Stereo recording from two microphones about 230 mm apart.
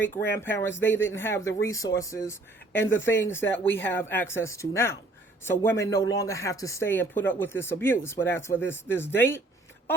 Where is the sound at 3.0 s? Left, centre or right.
Centre.